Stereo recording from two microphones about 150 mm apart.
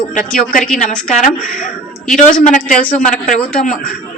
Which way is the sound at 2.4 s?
60° left (ahead or behind).